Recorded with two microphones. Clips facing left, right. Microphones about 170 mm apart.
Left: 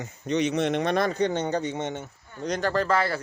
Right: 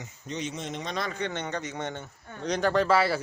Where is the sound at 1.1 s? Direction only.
35° left (ahead or behind); by 2.0 s 20° left (ahead or behind).